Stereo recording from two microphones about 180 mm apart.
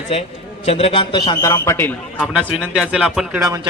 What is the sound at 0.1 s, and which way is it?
A man's voice, 35° left (ahead or behind).